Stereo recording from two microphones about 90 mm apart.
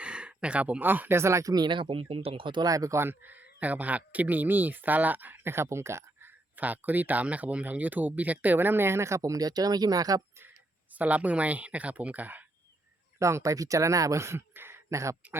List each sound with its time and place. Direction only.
0.0 s speech: 10° right (ahead or behind); by 1.6 s 35° right (ahead or behind)
1.6 s speech: 65° right (ahead or behind)
2.6 s speech: 40° right (ahead or behind)
3.0 s speech: 20° right (ahead or behind)
6.6 s speech: 20° right (ahead or behind); by 10.2 s 45° right (ahead or behind)
10.9 s a woman's voice: 15° right (ahead or behind)
13.1 s speech: 35° right (ahead or behind)